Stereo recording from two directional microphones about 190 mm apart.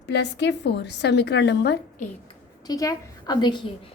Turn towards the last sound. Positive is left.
turn(degrees=20)  # may be behind; listen again after turning